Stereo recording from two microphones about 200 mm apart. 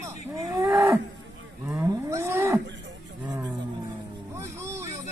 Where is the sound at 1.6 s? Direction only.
10° right (ahead or behind).